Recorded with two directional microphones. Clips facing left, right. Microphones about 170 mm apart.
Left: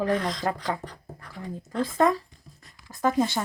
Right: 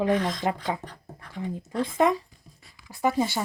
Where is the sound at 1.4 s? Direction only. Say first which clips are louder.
Right 1 dB; 20° right (ahead or behind).